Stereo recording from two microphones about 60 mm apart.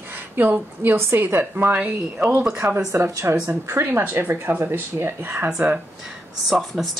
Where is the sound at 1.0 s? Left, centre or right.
Right.